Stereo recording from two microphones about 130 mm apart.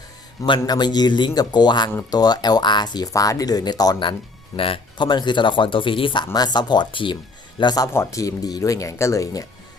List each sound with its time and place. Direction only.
0.4 s speech: 35° left (ahead or behind)
4.5 s speech: 45° left (ahead or behind); by 9.5 s 25° left (ahead or behind)